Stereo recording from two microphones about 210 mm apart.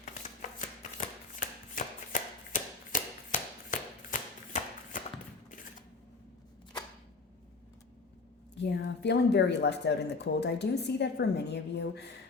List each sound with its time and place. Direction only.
0.8 s shuffling cards: 35° left (ahead or behind)
2.9 s a sound: 40° left (ahead or behind)
8.5 s speech: 55° left (ahead or behind)